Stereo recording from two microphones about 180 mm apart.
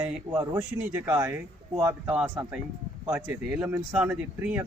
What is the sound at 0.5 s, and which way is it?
Speech, 15° right (ahead or behind).